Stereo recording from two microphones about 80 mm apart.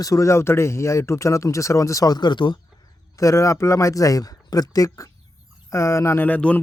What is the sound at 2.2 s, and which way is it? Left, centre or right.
Speech, left.